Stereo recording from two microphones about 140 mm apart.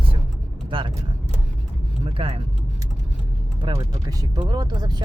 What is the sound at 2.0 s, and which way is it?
Speech, 40° right (ahead or behind).